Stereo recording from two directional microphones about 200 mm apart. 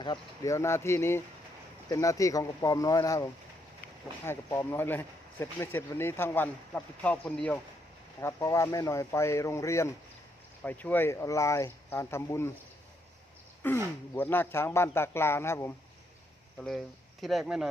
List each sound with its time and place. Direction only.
0.0 s speech: 20° left (ahead or behind)
4.3 s speech: 15° left (ahead or behind)
13.6 s speech: 10° left (ahead or behind)
16.6 s speech: centre (ahead or behind)